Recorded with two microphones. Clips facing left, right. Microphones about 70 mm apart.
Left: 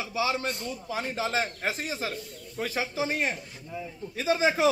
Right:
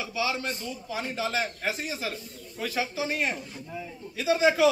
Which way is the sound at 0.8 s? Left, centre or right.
Left.